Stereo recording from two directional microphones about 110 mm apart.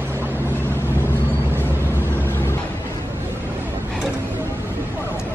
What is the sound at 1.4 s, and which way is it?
Vehicle, 20° right (ahead or behind).